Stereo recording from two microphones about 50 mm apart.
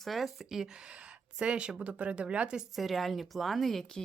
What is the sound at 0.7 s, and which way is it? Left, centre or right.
Speech, centre.